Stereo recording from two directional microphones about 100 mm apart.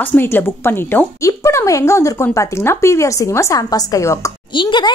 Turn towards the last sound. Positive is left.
turn(degrees=50)  # may be behind; listen again after turning